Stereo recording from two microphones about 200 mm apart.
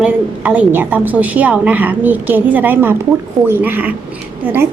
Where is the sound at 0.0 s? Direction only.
5° right (ahead or behind).